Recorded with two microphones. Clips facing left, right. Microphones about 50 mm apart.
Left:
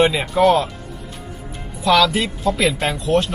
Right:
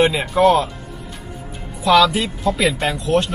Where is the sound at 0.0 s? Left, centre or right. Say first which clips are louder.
Even; centre.